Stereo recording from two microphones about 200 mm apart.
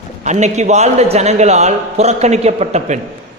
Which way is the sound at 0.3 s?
35° right (ahead or behind).